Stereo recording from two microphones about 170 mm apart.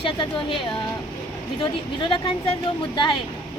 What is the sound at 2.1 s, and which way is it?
Speech, 35° left (ahead or behind).